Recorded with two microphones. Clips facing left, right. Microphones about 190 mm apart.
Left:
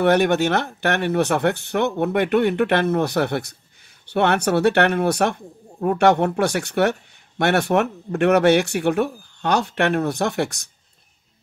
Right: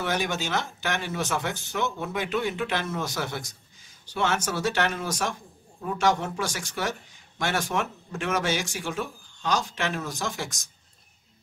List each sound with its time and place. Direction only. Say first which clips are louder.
0.0 s speech: left 12 dB; 60° left (ahead or behind)